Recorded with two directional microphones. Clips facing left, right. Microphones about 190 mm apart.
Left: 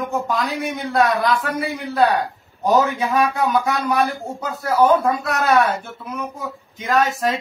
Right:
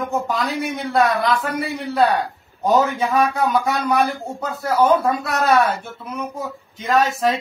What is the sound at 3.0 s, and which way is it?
Speech, centre (ahead or behind).